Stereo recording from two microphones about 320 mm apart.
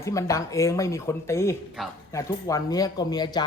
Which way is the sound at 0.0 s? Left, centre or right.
Centre.